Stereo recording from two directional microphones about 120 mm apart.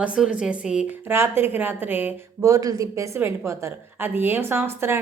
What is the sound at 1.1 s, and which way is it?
Speech, 20° right (ahead or behind).